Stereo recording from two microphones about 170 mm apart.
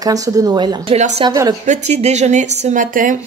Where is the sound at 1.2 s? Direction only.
20° right (ahead or behind).